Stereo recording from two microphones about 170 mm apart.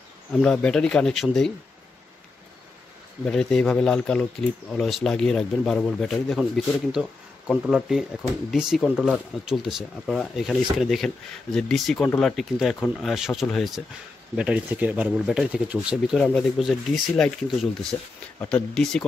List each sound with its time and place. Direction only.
0.3 s speech: 5° left (ahead or behind)
3.3 s speech: 5° left (ahead or behind)